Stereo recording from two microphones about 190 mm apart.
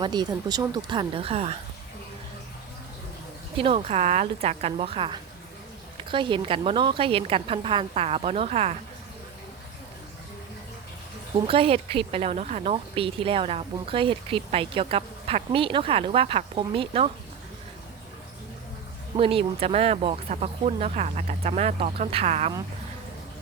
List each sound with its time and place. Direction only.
0.0 s a woman's voice: 20° right (ahead or behind)
3.6 s a woman's voice: 35° right (ahead or behind)
11.4 s a woman's voice: 30° right (ahead or behind)
19.1 s speech: 30° right (ahead or behind)